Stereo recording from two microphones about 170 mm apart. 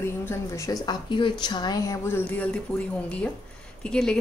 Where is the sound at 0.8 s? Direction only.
25° left (ahead or behind).